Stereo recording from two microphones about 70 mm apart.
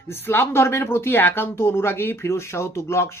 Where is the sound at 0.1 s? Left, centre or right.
Left.